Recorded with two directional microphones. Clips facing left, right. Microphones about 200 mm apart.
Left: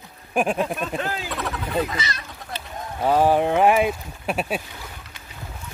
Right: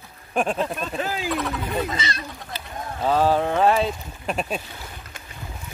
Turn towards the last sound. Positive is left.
turn(degrees=5)  # may be behind; listen again after turning